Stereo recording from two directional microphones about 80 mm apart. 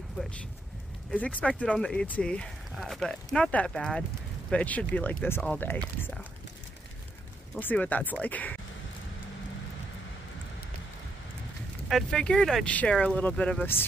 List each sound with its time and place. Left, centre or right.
1.1 s speech: centre
2.7 s speech: centre; by 5.8 s left
7.5 s speech: centre
12.1 s speech: centre